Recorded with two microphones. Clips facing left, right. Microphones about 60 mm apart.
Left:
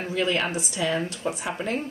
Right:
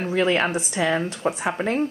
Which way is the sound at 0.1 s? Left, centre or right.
Right.